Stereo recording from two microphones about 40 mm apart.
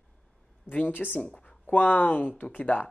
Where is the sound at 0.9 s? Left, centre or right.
Left.